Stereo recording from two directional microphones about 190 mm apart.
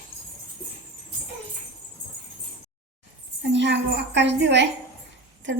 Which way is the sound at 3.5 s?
65° right (ahead or behind).